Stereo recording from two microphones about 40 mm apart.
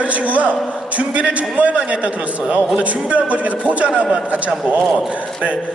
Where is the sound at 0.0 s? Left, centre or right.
Right.